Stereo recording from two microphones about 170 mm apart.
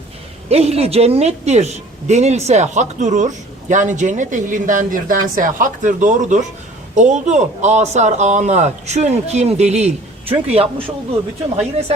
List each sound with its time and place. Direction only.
0.4 s a woman's voice: 35° right (ahead or behind)